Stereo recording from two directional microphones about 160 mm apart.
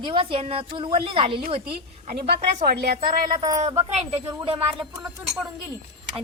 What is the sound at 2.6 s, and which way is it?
Speech, 80° right.